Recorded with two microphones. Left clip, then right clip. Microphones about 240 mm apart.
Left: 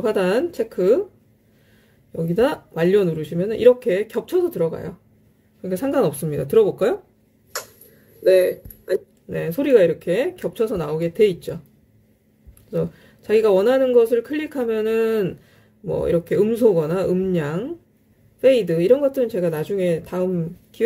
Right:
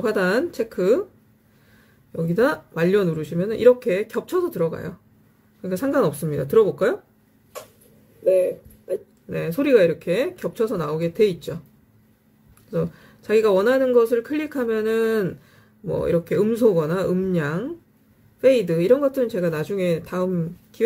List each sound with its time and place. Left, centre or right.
0.0 s speech: centre
2.1 s speech: centre
8.2 s a sound: centre
9.4 s speech: centre
12.7 s speech: centre